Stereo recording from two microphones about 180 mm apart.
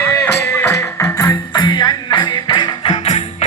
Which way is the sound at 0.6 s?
15° left (ahead or behind).